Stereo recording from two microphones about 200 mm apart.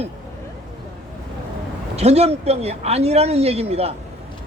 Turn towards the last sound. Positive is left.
turn(degrees=-30)  # may be behind; listen again after turning